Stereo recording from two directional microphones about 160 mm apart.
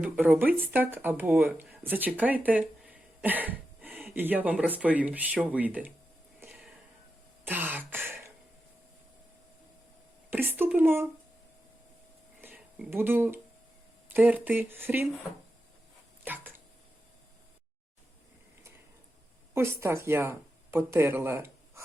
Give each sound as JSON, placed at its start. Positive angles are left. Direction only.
{"t": 0.0, "sound": "speech", "side_deg": -10}
{"t": 6.5, "sound": "a sound", "side_deg": -5}
{"t": 7.4, "sound": "throat clearing", "side_deg": -10}
{"t": 10.2, "sound": "speech", "side_deg": -10}
{"t": 12.4, "sound": "a sound", "side_deg": -15}
{"t": 12.9, "sound": "speech", "side_deg": -15}
{"t": 16.2, "sound": "dog", "side_deg": -10}
{"t": 19.5, "sound": "speech", "side_deg": -15}